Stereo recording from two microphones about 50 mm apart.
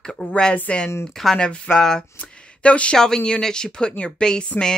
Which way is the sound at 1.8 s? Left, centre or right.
Centre.